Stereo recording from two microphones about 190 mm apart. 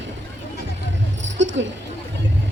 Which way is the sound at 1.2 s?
75° right (ahead or behind).